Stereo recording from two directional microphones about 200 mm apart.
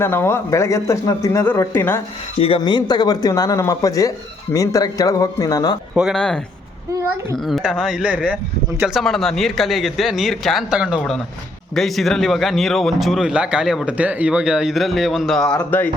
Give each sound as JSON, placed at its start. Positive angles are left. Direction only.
{"t": 0.0, "sound": "speech", "side_deg": 10}
{"t": 2.4, "sound": "speech", "side_deg": 25}
{"t": 5.9, "sound": "speech", "side_deg": 0}
{"t": 7.4, "sound": "speech", "side_deg": 0}